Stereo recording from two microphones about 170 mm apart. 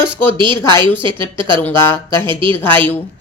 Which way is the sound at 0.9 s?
10° left (ahead or behind).